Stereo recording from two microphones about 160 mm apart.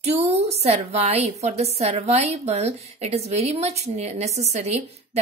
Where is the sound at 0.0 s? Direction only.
40° right (ahead or behind).